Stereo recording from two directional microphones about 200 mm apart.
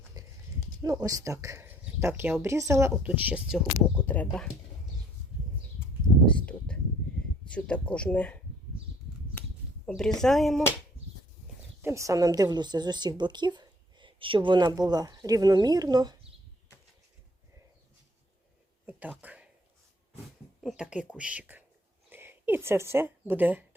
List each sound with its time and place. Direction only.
0.2 s horse: 20° right (ahead or behind)
1.0 s speech: 15° right (ahead or behind)
3.8 s speech: 10° left (ahead or behind)
6.2 s a sound: 5° left (ahead or behind)
7.5 s speech: 5° left (ahead or behind)
9.8 s speech: centre (ahead or behind)
11.8 s a woman's voice: 15° right (ahead or behind)
18.9 s a sound: 10° right (ahead or behind)
20.6 s speech: centre (ahead or behind)